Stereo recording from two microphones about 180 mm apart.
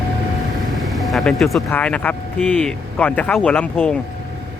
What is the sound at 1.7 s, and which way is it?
Speech, 10° left (ahead or behind).